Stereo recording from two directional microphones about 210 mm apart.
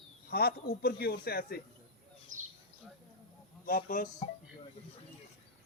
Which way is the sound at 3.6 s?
40° left (ahead or behind).